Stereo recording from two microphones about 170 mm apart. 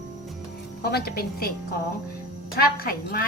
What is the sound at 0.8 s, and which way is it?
Speech, 65° left (ahead or behind).